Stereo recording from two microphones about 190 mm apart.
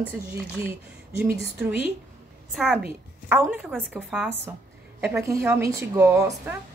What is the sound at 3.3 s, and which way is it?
A woman's voice, 10° right (ahead or behind).